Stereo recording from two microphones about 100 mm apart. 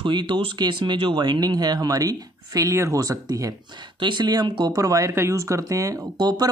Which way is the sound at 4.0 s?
50° right (ahead or behind).